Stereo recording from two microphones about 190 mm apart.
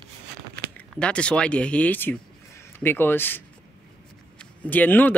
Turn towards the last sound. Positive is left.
turn(degrees=10)  # may be behind; listen again after turning